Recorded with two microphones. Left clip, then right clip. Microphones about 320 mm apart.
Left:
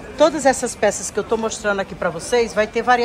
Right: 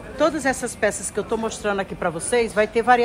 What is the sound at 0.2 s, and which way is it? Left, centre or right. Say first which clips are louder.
Speech: left 6 dB; centre.